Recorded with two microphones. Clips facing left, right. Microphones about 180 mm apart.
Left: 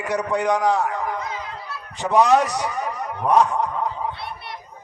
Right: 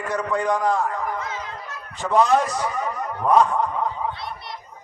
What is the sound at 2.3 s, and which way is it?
Speech, 70° left (ahead or behind).